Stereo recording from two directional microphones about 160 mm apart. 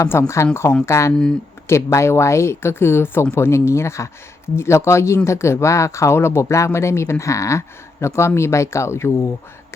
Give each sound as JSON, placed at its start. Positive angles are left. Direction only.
{"t": 0.0, "sound": "speech", "side_deg": 15}